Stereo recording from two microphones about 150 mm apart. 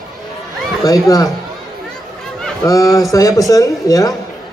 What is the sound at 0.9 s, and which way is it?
Speech, 25° left (ahead or behind).